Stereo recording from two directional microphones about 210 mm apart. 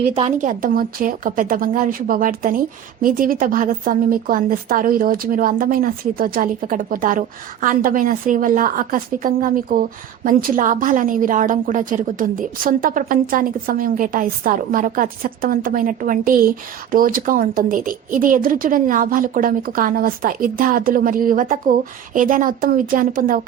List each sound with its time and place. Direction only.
0.1 s speech: 25° right (ahead or behind)
0.3 s a woman's voice: 40° right (ahead or behind)